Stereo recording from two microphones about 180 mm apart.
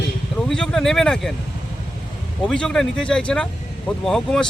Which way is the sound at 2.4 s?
5° left (ahead or behind).